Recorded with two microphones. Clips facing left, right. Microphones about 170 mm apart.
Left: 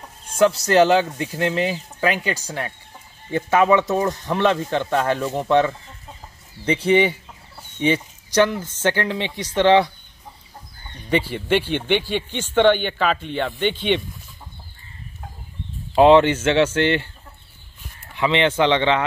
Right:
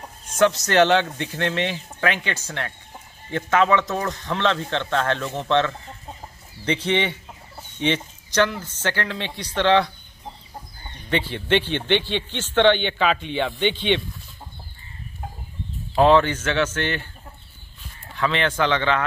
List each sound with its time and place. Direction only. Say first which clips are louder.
0.7 s a man's voice: left 2 dB; 5° left (ahead or behind)
6.9 s a man's voice: left 9 dB; 5° left (ahead or behind)
11.1 s a man's voice: left 2 dB; 10° left (ahead or behind)
15.9 s speech: left 4 dB; 20° left (ahead or behind)
18.1 s speech: left 4 dB; 20° left (ahead or behind)